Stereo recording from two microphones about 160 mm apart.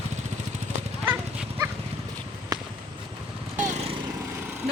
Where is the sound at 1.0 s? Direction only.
15° right (ahead or behind).